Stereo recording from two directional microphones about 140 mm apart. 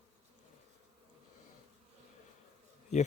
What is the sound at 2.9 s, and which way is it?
Speech, 55° left (ahead or behind).